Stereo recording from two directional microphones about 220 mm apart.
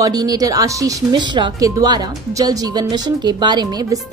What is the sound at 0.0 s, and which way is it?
Speech, 15° right (ahead or behind).